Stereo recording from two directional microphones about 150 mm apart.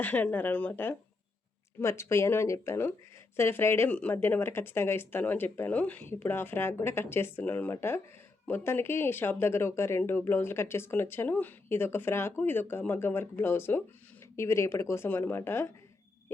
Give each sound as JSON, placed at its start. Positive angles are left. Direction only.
{"t": 0.0, "sound": "speech", "side_deg": 10}